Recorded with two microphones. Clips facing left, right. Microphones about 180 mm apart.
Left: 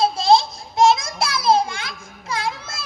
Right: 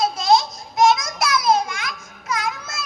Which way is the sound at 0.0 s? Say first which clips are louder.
Left 2 dB; 30° left (ahead or behind).